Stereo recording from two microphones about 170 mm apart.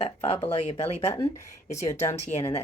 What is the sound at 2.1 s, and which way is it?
Speech, 40° left (ahead or behind).